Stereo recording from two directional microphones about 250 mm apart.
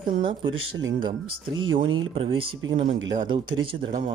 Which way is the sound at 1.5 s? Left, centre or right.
Right.